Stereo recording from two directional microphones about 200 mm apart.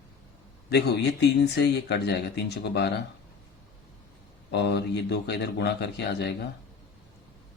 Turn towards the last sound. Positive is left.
turn(degrees=60)  # may be behind; listen again after turning